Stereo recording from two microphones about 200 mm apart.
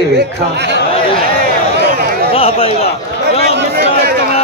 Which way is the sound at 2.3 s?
30° left (ahead or behind).